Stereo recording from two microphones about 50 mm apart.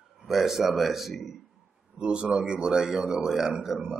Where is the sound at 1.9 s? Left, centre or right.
Right.